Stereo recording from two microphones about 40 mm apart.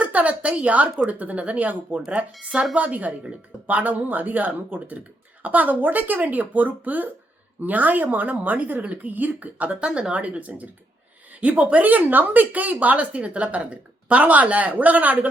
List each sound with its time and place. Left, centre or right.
0.0 s speech: right
9.8 s speech: right
10.2 s speech: right